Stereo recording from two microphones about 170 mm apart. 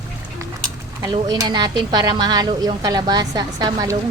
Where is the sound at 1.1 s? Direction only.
25° right (ahead or behind).